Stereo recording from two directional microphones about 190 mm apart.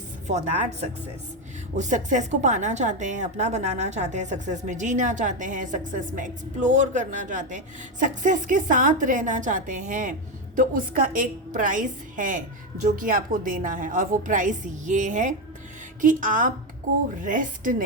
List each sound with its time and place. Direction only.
0.3 s a woman's voice: 40° right (ahead or behind)